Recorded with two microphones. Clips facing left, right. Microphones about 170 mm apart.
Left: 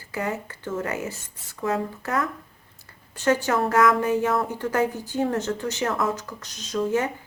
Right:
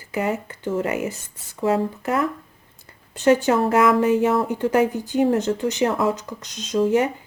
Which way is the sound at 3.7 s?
20° right (ahead or behind).